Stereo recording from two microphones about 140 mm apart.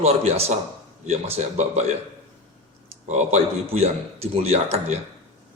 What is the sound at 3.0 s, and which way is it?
Speech, 50° right (ahead or behind).